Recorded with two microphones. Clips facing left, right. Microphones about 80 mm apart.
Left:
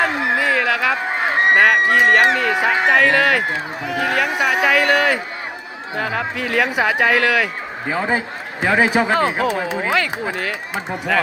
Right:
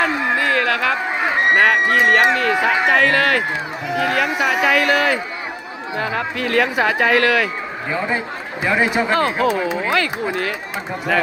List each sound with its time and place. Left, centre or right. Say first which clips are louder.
0.2 s a sound: even; centre
1.5 s speech: left 1 dB; centre
7.9 s a man's voice: left 2 dB; left
9.1 s speech: right 1 dB; centre
11.1 s speech: even; centre